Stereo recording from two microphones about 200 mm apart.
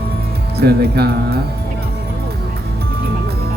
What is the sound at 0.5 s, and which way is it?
Speech, 55° right (ahead or behind).